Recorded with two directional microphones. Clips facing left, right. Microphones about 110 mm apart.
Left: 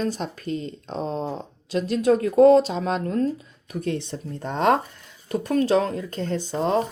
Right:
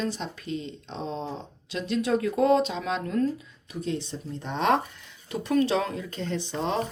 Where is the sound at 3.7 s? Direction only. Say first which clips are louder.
Left 4 dB; 60° left (ahead or behind); by 6.8 s 40° left (ahead or behind).